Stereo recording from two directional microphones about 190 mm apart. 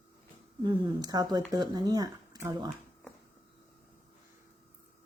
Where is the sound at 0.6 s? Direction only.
20° right (ahead or behind).